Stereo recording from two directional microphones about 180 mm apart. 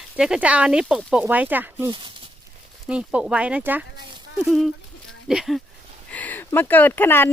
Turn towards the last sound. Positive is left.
turn(degrees=10)  # may be behind; listen again after turning